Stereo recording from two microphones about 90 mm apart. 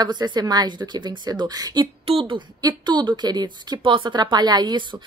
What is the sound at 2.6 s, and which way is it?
Speech, 50° right (ahead or behind).